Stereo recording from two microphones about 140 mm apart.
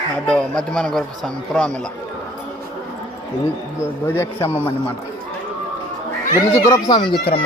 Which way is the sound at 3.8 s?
20° left (ahead or behind).